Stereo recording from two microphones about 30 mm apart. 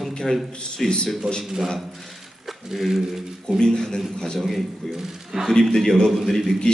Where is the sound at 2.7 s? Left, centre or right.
Centre.